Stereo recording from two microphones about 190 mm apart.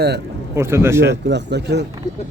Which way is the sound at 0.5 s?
15° right (ahead or behind).